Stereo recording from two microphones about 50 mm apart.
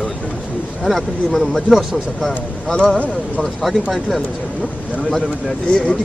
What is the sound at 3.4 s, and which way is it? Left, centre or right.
Speech, centre.